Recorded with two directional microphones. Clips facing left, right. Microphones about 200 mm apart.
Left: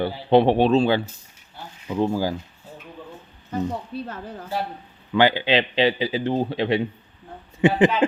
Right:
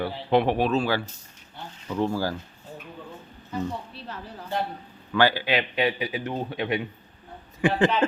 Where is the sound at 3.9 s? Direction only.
50° left (ahead or behind).